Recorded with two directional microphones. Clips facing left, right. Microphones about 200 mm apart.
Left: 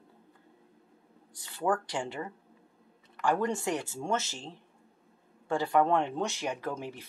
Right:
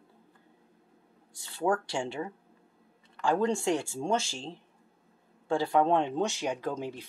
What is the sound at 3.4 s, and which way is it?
Speech, 25° right (ahead or behind).